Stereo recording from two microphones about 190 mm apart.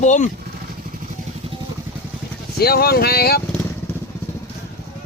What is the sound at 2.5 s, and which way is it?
Speech, 55° left (ahead or behind).